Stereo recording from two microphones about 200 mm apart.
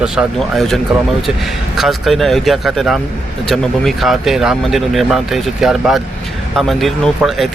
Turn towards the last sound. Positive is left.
turn(degrees=0)  # may be behind; listen again after turning